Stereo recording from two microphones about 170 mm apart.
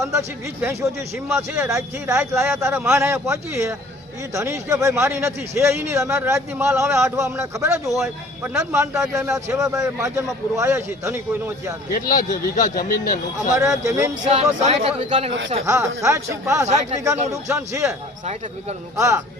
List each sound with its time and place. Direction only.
0.0 s a man's voice: 20° right (ahead or behind)
11.9 s speech: 55° left (ahead or behind)
13.5 s speech: 20° right (ahead or behind)
14.3 s speech: 40° right (ahead or behind)
15.6 s a man's voice: 15° right (ahead or behind)
16.6 s speech: 45° right (ahead or behind)
17.5 s a man's voice: 15° right (ahead or behind)
18.9 s a man's voice: 15° right (ahead or behind)